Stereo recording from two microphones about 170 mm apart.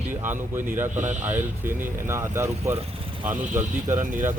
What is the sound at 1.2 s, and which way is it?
Speech, 10° right (ahead or behind).